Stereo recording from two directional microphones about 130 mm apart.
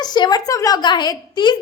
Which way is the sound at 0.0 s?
30° left (ahead or behind).